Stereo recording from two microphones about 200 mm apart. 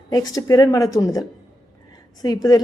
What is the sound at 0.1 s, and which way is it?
Speech, 20° left (ahead or behind).